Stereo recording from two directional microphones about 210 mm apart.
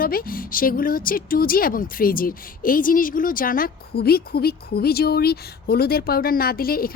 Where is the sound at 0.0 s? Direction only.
45° left (ahead or behind).